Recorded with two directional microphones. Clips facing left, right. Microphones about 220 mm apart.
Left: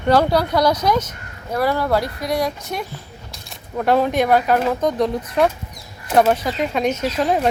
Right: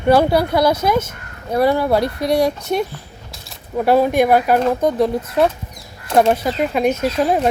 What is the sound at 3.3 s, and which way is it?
Speech, 5° right (ahead or behind).